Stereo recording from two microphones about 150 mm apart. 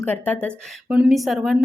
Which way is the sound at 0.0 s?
10° left (ahead or behind).